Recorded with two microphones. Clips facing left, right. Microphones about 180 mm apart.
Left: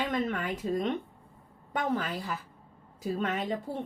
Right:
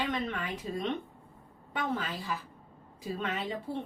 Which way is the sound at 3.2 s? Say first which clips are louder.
Left 3 dB; 45° left (ahead or behind).